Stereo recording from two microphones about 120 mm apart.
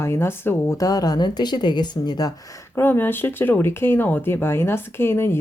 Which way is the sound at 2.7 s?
15° left (ahead or behind).